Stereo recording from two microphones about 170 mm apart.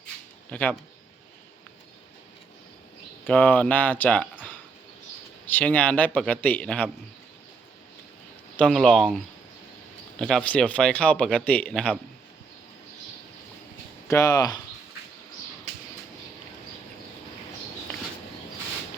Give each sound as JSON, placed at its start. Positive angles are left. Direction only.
{"t": 0.5, "sound": "speech", "side_deg": 10}
{"t": 3.2, "sound": "speech", "side_deg": 10}
{"t": 5.5, "sound": "speech", "side_deg": 10}
{"t": 8.5, "sound": "speech", "side_deg": 5}
{"t": 14.1, "sound": "speech", "side_deg": 20}